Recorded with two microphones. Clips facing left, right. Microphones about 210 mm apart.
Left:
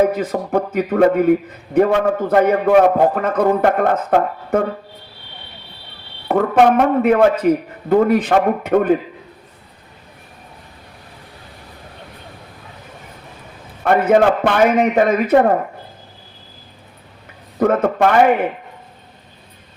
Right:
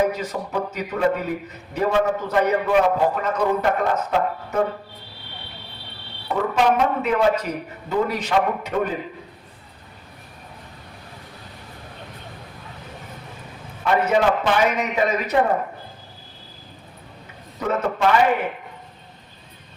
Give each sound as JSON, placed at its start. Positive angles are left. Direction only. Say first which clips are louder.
{"t": 0.1, "sound": "a man's voice", "louder": "left 8 dB", "side_deg": 55}
{"t": 6.2, "sound": "a man's voice", "louder": "left 7 dB", "side_deg": 55}
{"t": 13.8, "sound": "a man's voice", "louder": "left 6 dB", "side_deg": 50}
{"t": 17.6, "sound": "a man's voice", "louder": "left 7 dB", "side_deg": 55}